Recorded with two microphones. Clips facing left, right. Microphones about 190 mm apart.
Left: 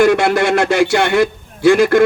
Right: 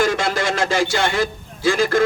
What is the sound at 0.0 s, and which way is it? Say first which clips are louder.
A man's voice: left 7 dB; 60° left (ahead or behind).